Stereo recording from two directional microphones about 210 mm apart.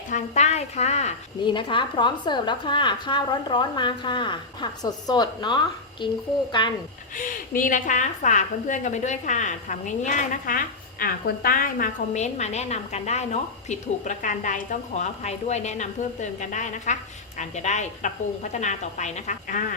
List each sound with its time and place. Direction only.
0.1 s a woman's voice: 35° left (ahead or behind)
7.2 s a woman's voice: 40° left (ahead or behind)